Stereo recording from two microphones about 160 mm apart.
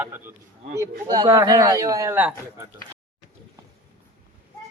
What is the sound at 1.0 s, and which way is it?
Speech, 25° right (ahead or behind).